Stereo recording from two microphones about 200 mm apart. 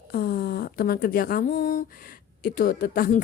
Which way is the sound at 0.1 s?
50° left (ahead or behind).